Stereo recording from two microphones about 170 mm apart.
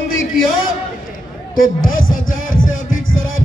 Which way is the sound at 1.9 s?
55° left (ahead or behind).